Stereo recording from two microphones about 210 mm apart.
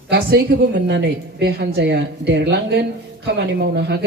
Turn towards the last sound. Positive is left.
turn(degrees=-50)  # may be behind; listen again after turning